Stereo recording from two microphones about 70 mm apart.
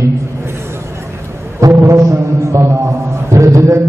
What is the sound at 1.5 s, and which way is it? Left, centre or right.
A man's voice, right.